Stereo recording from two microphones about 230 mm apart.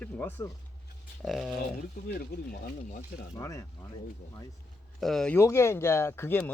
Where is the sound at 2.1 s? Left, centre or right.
Left.